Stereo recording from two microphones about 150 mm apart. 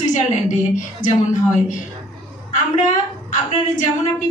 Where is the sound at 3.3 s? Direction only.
55° left (ahead or behind).